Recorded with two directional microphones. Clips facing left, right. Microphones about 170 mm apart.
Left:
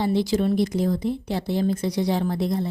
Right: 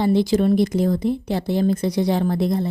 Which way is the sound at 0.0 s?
55° right (ahead or behind).